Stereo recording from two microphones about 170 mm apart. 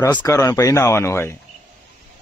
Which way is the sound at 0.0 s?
20° left (ahead or behind).